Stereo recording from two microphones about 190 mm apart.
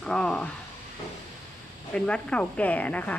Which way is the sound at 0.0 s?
5° left (ahead or behind).